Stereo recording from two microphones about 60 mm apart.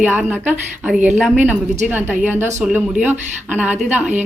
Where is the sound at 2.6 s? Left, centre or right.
Right.